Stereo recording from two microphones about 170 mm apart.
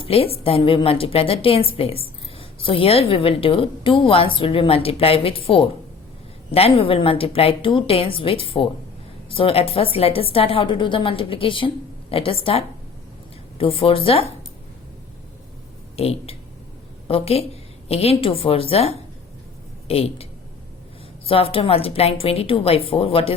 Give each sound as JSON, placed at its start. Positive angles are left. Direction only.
{"t": 0.0, "sound": "a woman's voice", "side_deg": 35}
{"t": 16.0, "sound": "a woman's voice", "side_deg": 35}
{"t": 21.2, "sound": "a woman's voice", "side_deg": 35}